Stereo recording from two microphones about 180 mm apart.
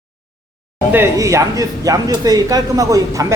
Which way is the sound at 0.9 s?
15° right (ahead or behind).